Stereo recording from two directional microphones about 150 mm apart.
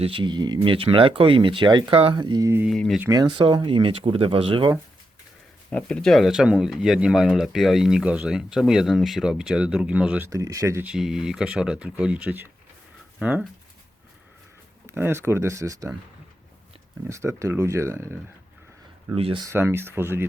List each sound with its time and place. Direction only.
0.0 s speech: 35° right (ahead or behind)
2.6 s speech: 5° left (ahead or behind)
3.1 s speech: 30° right (ahead or behind)
5.7 s speech: 5° left (ahead or behind)
10.2 s speech: 20° right (ahead or behind)
10.8 s speech: 5° right (ahead or behind)
14.8 s speech: 15° right (ahead or behind)
17.1 s speech: 20° right (ahead or behind)
19.1 s speech: 35° right (ahead or behind)
19.5 s speech: 15° right (ahead or behind)